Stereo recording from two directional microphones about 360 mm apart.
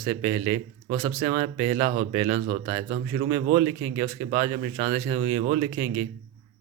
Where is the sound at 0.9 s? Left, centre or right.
Right.